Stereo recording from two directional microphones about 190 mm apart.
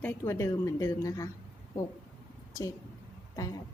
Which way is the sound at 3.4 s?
20° left (ahead or behind).